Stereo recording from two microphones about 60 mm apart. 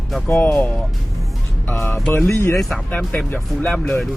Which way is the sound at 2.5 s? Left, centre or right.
Centre.